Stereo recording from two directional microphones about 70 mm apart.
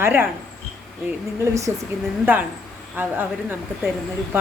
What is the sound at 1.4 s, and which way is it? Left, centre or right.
Speech, right.